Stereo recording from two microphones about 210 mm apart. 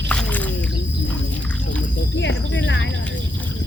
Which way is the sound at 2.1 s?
60° left (ahead or behind).